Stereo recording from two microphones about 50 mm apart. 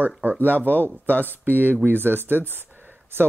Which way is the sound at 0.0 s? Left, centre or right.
Right.